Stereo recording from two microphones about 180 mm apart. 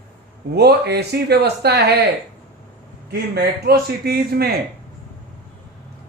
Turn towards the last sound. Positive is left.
turn(degrees=-60)  # may be behind; listen again after turning